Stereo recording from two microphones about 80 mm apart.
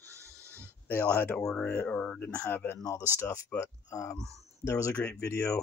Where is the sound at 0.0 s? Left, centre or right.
Left.